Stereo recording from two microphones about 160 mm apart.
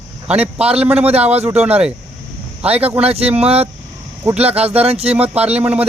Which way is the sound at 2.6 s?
40° right (ahead or behind).